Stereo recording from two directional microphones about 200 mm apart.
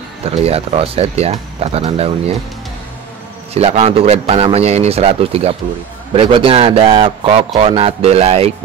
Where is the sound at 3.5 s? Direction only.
30° right (ahead or behind).